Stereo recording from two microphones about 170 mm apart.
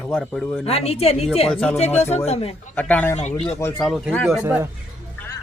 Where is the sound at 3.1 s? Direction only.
40° left (ahead or behind).